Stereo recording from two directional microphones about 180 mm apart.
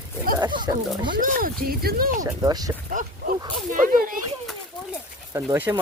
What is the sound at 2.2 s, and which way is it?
Speech, 20° right (ahead or behind).